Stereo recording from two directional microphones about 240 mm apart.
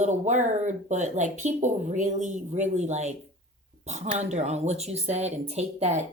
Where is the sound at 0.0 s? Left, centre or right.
Right.